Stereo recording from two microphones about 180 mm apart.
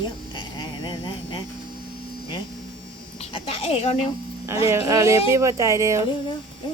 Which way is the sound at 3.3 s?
35° left (ahead or behind).